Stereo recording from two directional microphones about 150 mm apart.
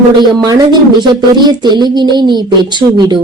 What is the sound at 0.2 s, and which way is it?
Speech, 30° right (ahead or behind).